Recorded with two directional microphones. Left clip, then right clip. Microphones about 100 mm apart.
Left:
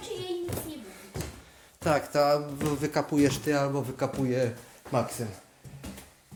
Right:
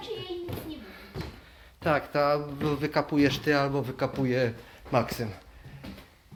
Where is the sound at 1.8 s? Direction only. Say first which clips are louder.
Left 1 dB; 45° left (ahead or behind).